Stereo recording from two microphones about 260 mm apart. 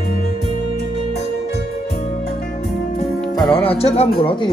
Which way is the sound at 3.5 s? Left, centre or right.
Left.